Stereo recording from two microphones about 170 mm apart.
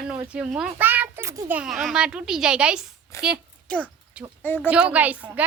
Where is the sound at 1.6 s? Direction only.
Centre (ahead or behind).